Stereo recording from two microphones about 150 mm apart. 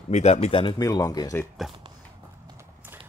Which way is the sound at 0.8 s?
25° left (ahead or behind).